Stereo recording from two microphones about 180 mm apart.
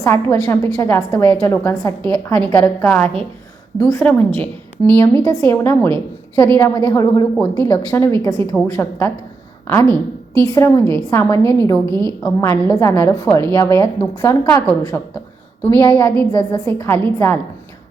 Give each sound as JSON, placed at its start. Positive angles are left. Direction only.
{"t": 0.0, "sound": "a woman's voice", "side_deg": 15}
{"t": 2.0, "sound": "a woman's voice", "side_deg": -25}
{"t": 2.3, "sound": "a woman's voice", "side_deg": 10}
{"t": 11.9, "sound": "a woman's voice", "side_deg": -20}
{"t": 12.2, "sound": "a woman's voice", "side_deg": 15}